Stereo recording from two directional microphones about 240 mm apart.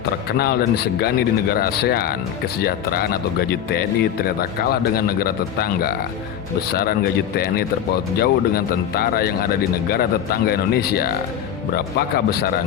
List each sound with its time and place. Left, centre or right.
0.3 s speech: left